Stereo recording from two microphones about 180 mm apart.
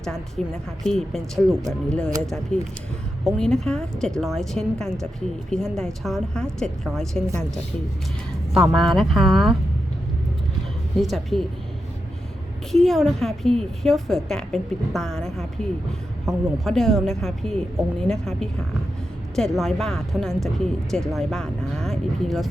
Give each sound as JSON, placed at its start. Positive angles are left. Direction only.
{"t": 0.0, "sound": "speech", "side_deg": 0}
{"t": 2.0, "sound": "speech", "side_deg": -20}
{"t": 2.5, "sound": "speech", "side_deg": 5}
{"t": 8.5, "sound": "speech", "side_deg": 0}
{"t": 11.0, "sound": "speech", "side_deg": 0}
{"t": 12.7, "sound": "speech", "side_deg": 0}